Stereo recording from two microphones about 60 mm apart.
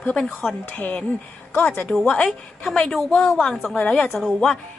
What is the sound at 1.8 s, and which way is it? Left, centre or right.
A woman's voice, centre.